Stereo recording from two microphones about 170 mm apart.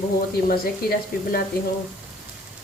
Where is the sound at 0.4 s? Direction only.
60° left (ahead or behind).